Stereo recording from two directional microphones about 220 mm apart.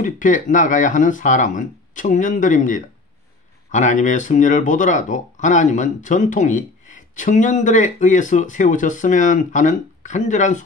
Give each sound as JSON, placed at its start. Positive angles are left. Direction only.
{"t": 0.0, "sound": "speech", "side_deg": 35}